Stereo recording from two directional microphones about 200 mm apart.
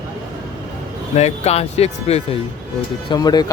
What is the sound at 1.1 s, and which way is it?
Speech, 35° left (ahead or behind).